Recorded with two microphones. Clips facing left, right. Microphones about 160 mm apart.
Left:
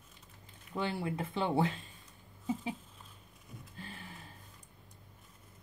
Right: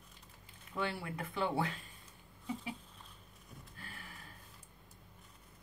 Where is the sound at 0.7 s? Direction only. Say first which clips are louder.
Left 4 dB; 25° left (ahead or behind).